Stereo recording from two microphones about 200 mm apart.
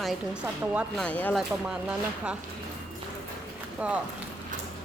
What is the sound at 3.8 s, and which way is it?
Speech, 5° right (ahead or behind).